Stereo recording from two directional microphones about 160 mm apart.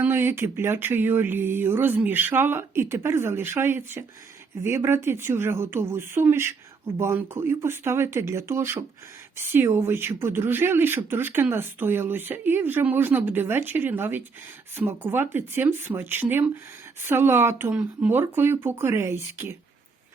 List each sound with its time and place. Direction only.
0.0 s a woman's voice: 15° right (ahead or behind)